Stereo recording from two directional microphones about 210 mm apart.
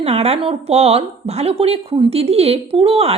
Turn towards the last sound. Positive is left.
turn(degrees=-30)  # may be behind; listen again after turning